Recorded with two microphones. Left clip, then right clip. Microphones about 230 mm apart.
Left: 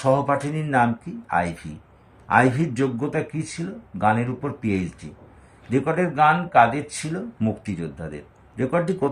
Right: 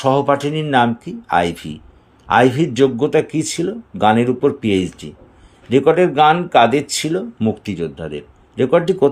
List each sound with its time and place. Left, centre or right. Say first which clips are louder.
0.0 s speech: right 5 dB; right